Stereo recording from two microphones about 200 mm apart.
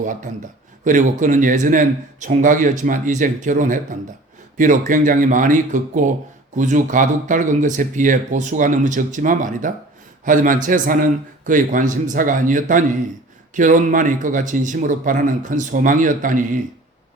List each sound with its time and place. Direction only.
0.9 s speech: 40° right (ahead or behind)